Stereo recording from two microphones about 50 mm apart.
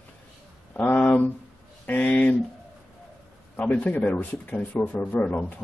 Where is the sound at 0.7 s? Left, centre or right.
Left.